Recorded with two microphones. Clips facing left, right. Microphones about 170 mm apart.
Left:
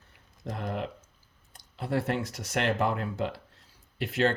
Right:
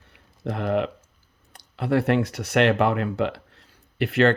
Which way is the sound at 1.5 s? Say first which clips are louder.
Right 7 dB; 70° right (ahead or behind).